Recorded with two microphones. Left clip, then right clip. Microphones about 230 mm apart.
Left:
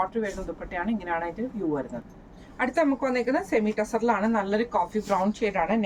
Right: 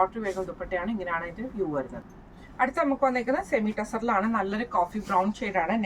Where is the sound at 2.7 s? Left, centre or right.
Centre.